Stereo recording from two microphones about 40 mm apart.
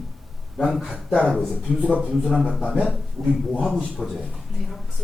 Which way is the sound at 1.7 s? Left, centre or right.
Centre.